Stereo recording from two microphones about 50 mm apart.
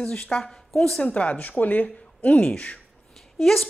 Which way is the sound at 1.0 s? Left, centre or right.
Left.